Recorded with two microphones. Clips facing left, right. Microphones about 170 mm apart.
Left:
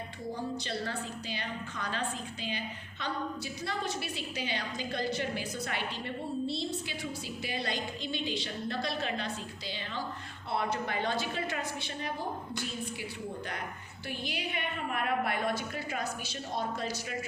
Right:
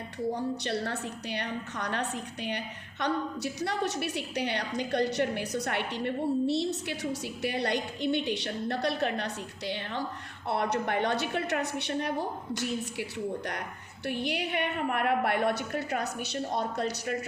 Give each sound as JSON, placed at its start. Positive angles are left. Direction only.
{"t": 0.3, "sound": "a woman's voice", "side_deg": -70}
{"t": 14.1, "sound": "a woman's voice", "side_deg": -65}